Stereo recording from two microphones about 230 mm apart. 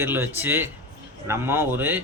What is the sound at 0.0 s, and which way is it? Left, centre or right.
Speech, centre.